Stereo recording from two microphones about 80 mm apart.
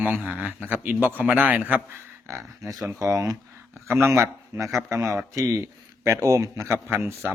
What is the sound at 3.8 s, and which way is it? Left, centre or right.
A man's voice, right.